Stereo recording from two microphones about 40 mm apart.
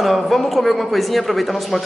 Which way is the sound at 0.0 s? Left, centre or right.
Centre.